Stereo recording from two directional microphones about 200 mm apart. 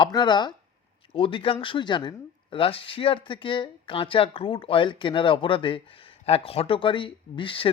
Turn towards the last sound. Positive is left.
turn(degrees=25)  # may be behind; listen again after turning